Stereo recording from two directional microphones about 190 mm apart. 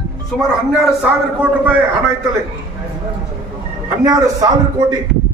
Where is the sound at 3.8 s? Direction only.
15° right (ahead or behind).